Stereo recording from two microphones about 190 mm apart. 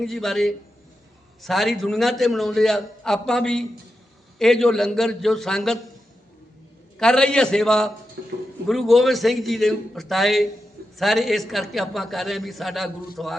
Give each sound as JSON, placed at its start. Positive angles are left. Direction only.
{"t": 0.0, "sound": "a man's voice", "side_deg": 0}
{"t": 6.9, "sound": "a man's voice", "side_deg": 5}
{"t": 8.2, "sound": "a sound", "side_deg": -60}
{"t": 8.6, "sound": "a man's voice", "side_deg": 0}